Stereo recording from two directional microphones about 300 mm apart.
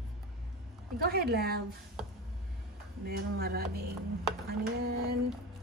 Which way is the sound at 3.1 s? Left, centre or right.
Right.